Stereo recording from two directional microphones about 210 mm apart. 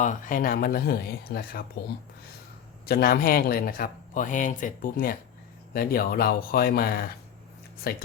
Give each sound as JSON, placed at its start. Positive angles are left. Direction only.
{"t": 0.0, "sound": "speech", "side_deg": 40}
{"t": 2.8, "sound": "speech", "side_deg": 45}